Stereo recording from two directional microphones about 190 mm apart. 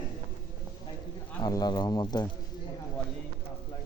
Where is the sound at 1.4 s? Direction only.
20° left (ahead or behind).